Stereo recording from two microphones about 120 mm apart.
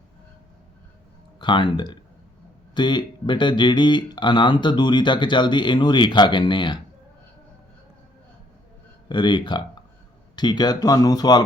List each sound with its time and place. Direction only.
1.4 s speech: 40° left (ahead or behind)
9.0 s speech: 40° left (ahead or behind)